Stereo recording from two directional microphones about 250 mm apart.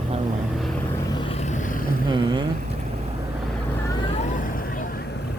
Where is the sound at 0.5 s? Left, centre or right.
Centre.